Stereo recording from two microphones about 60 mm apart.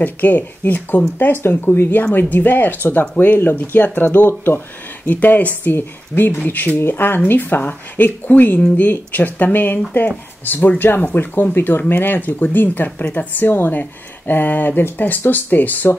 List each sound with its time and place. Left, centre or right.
0.0 s a woman's voice: left